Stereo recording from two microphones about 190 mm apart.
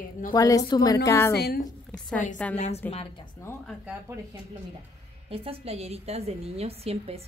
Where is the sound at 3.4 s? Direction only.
10° left (ahead or behind).